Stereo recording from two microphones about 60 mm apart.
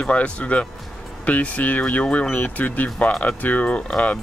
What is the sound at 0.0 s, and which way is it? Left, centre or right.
Speech, centre.